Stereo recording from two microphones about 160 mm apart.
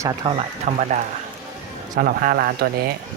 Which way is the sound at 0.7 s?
55° right (ahead or behind).